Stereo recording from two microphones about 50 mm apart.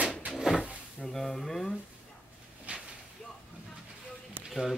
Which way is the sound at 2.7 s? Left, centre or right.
Right.